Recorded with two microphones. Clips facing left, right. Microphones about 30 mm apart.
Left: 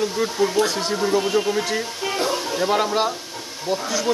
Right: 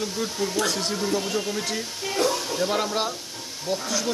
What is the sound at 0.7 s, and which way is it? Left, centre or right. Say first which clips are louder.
Speech: left 3 dB; centre.